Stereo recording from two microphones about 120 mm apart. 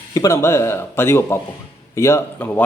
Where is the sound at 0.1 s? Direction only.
30° left (ahead or behind).